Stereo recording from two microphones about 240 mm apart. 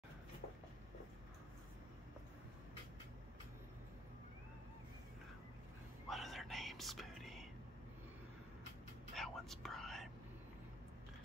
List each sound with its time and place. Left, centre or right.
6.0 s whispering: centre
9.1 s whispering: centre